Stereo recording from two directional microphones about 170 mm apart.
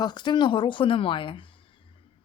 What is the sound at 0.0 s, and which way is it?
Speech, 25° left (ahead or behind).